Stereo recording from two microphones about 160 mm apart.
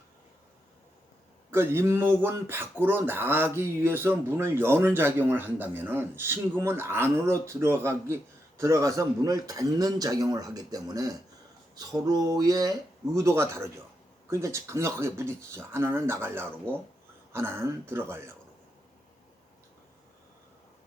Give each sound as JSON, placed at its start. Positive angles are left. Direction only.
{"t": 1.5, "sound": "speech", "side_deg": -15}